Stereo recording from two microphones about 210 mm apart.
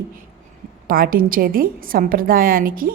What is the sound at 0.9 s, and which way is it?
A woman's voice, 45° right (ahead or behind).